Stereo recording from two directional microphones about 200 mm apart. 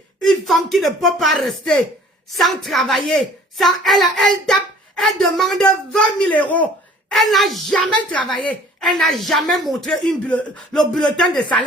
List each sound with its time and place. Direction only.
0.2 s speech: centre (ahead or behind)